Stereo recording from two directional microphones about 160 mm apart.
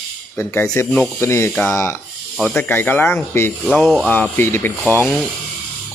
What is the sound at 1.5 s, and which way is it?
Speech, 5° left (ahead or behind).